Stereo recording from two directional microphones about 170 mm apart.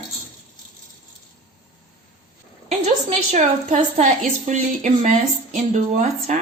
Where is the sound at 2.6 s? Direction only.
40° right (ahead or behind).